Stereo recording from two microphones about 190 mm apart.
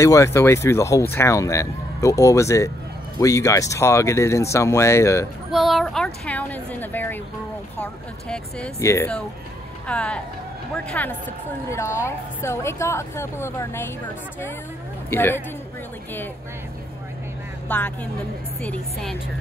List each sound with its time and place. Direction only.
0.0 s speech: 15° left (ahead or behind)
5.5 s speech: centre (ahead or behind)
15.0 s speech: 10° left (ahead or behind)
17.6 s speech: 10° left (ahead or behind)